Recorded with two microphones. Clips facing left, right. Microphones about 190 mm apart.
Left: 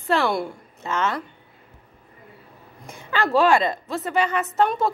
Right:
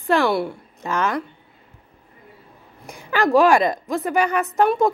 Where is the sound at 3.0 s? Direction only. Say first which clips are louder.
Right 3 dB; 15° right (ahead or behind).